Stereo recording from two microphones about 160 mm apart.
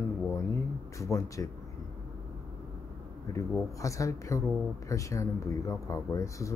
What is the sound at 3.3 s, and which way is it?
Speech, 20° left (ahead or behind).